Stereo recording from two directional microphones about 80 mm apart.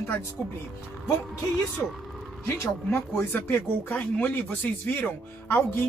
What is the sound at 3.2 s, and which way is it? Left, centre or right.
Speech, left.